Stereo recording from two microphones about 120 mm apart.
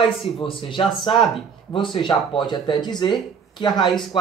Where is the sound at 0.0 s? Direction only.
45° left (ahead or behind).